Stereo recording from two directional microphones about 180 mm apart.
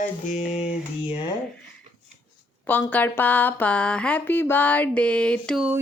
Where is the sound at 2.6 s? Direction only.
10° left (ahead or behind).